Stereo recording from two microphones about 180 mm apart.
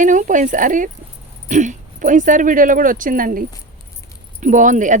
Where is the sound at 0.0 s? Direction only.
45° right (ahead or behind).